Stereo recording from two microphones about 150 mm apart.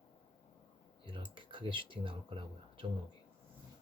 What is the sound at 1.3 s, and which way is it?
Speech, 35° right (ahead or behind).